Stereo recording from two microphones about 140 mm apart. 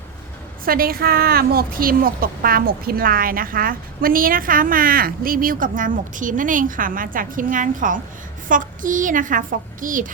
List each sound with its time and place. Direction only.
0.6 s a woman's voice: 90° right; by 10.1 s 70° right (ahead or behind)